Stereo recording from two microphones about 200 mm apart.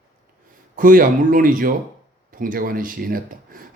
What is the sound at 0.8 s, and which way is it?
A man's voice, 45° right (ahead or behind).